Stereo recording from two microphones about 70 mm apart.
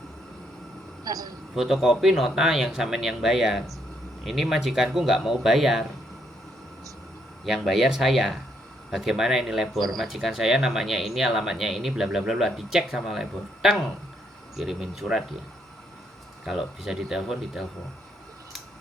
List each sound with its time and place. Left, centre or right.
1.0 s speech: right
1.5 s speech: centre
7.4 s speech: centre
16.5 s speech: centre